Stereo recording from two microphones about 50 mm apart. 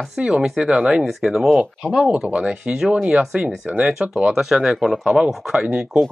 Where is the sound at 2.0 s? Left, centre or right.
Right.